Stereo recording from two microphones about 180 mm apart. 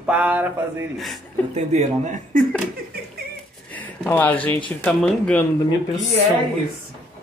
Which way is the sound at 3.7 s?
10° left (ahead or behind).